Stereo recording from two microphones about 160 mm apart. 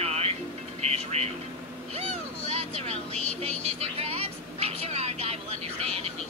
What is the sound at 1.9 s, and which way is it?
Vehicle, 40° right (ahead or behind).